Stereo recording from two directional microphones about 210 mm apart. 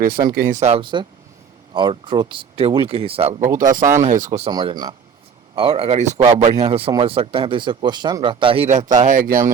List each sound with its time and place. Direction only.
0.3 s speech: 40° right (ahead or behind)
3.6 s speech: 40° right (ahead or behind)
4.4 s speech: 25° right (ahead or behind); by 9.2 s 40° right (ahead or behind)